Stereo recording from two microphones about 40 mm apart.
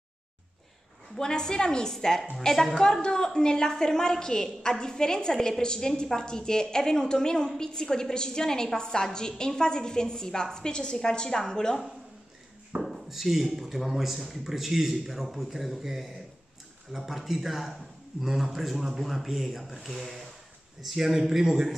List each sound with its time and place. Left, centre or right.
1.1 s a woman's voice: centre
12.8 s a man's voice: centre